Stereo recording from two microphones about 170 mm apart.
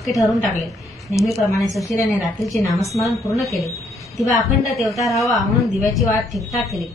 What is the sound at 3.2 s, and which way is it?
Speech, 20° left (ahead or behind).